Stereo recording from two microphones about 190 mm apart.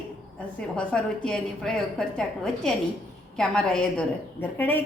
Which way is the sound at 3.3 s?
5° left (ahead or behind).